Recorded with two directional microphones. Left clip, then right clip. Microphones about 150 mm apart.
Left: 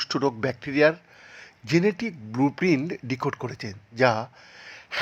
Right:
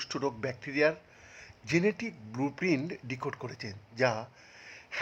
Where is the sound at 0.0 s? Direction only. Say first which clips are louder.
Left 8 dB; 25° left (ahead or behind).